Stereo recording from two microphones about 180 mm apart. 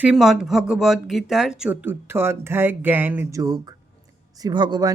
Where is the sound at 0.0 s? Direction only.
5° right (ahead or behind).